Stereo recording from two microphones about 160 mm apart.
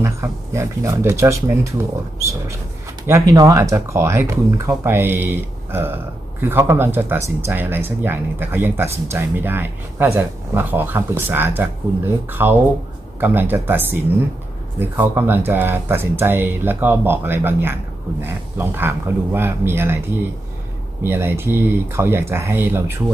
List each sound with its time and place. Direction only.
0.0 s speech: 15° right (ahead or behind)
3.1 s speech: 20° right (ahead or behind)